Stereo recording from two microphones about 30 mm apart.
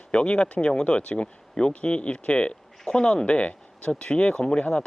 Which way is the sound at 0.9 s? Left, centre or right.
Left.